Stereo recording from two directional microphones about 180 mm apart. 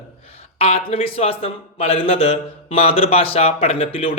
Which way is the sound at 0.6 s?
35° left (ahead or behind).